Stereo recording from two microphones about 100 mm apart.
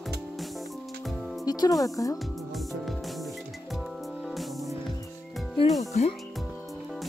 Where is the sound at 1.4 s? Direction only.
40° left (ahead or behind).